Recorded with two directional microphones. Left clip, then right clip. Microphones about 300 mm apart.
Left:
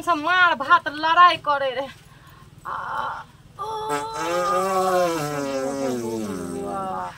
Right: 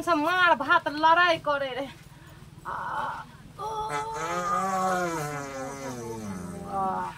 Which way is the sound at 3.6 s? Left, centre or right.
Centre.